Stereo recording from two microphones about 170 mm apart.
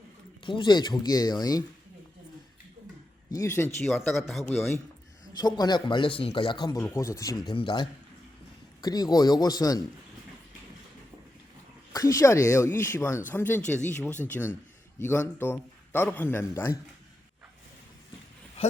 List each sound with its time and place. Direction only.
0.4 s a man's voice: 30° left (ahead or behind)
3.3 s a man's voice: 15° left (ahead or behind)
3.8 s a man's voice: centre (ahead or behind)
5.4 s a man's voice: 25° left (ahead or behind)
11.9 s a man's voice: 20° left (ahead or behind)